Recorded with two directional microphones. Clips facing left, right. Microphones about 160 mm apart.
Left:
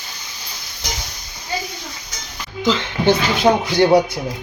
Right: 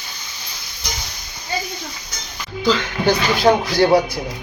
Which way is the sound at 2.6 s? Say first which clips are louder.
Left 1 dB; 25° left (ahead or behind).